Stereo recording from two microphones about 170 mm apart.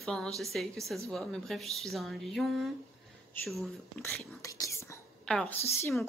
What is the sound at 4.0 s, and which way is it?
Speech, 15° left (ahead or behind).